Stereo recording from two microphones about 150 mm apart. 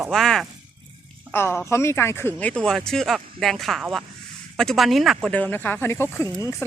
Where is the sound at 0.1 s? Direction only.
Centre (ahead or behind).